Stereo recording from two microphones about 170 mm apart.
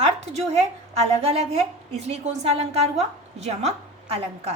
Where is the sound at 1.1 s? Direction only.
40° right (ahead or behind).